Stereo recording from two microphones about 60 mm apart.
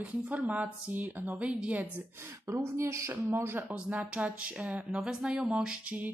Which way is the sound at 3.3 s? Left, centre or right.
Right.